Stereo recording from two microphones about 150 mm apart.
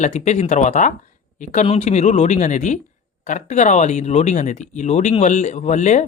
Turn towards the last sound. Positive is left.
turn(degrees=55)  # may be behind; listen again after turning